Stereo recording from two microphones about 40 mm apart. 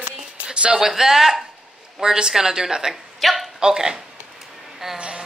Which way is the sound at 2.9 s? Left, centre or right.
Centre.